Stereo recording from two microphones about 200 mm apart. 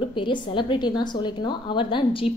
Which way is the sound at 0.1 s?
25° left (ahead or behind).